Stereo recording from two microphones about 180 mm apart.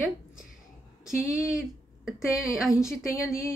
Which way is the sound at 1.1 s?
5° right (ahead or behind).